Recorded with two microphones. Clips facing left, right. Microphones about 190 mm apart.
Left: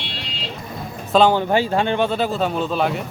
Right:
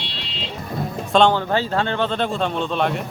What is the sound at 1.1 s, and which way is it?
Speech, 5° left (ahead or behind).